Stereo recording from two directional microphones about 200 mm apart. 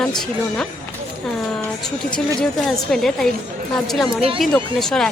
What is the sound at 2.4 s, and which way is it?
A woman's voice, centre (ahead or behind).